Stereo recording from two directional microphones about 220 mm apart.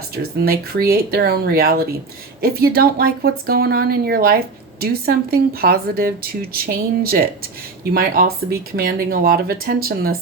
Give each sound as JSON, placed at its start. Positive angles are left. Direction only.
{"t": 0.2, "sound": "speech", "side_deg": -45}